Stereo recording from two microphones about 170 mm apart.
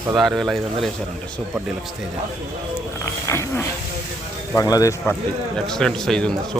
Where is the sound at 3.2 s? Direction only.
15° left (ahead or behind).